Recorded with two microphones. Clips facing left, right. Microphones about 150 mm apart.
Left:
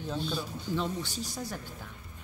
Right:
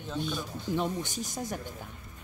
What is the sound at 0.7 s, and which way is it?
Speech, 15° right (ahead or behind).